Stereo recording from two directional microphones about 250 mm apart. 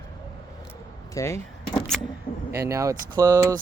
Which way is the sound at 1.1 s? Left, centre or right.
Centre.